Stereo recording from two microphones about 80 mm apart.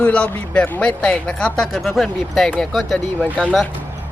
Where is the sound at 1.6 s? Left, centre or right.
Centre.